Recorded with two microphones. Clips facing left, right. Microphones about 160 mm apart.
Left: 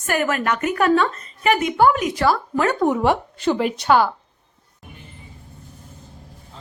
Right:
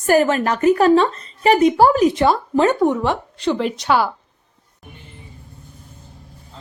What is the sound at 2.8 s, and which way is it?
A woman's voice, 5° left (ahead or behind).